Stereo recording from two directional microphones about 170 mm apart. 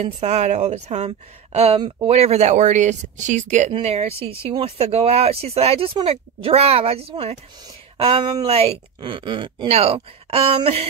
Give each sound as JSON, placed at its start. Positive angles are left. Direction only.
{"t": 0.0, "sound": "speech", "side_deg": -45}
{"t": 3.7, "sound": "speech", "side_deg": -35}